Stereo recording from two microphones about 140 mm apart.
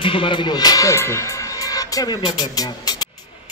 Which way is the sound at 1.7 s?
25° left (ahead or behind).